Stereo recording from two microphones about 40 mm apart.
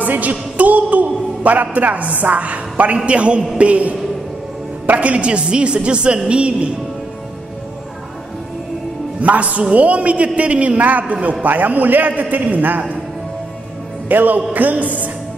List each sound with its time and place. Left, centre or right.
0.0 s a woman's voice: right
9.2 s a man's voice: right
14.0 s a man's voice: right